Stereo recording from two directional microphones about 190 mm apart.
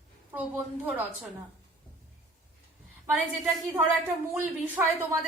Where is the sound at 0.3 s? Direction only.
10° right (ahead or behind).